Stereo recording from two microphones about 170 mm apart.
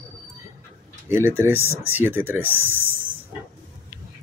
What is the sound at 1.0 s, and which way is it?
Speech, 15° right (ahead or behind).